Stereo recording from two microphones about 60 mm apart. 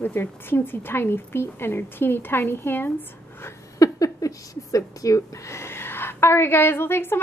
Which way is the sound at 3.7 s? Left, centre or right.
Left.